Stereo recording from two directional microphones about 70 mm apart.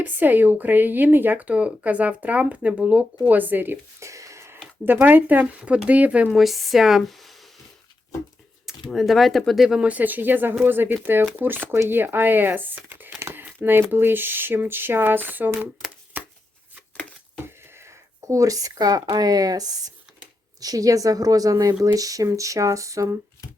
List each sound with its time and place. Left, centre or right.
0.0 s speech: right
4.0 s a sound: right
4.9 s speech: right
6.3 s speech: centre
8.6 s speech: centre
9.6 s speech: centre
9.9 s speech: right
13.3 s crumpling: right
13.9 s speech: right
16.1 s chopping: right
17.4 s a woman's voice: right